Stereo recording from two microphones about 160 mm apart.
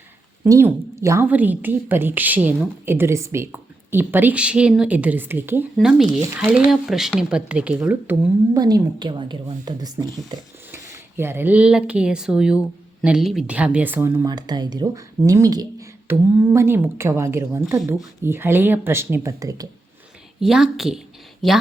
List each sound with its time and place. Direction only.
0.4 s a woman's voice: 20° right (ahead or behind)
5.7 s speech: centre (ahead or behind)
8.5 s speech: 25° right (ahead or behind)
11.2 s a woman's voice: 15° right (ahead or behind)
14.3 s a woman's voice: 25° right (ahead or behind)
20.4 s speech: 5° right (ahead or behind)